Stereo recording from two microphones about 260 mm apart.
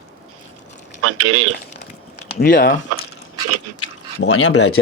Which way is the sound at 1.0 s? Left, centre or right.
Right.